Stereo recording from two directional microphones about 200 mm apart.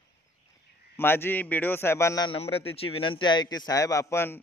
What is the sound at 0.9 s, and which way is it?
A man's voice, 10° left (ahead or behind).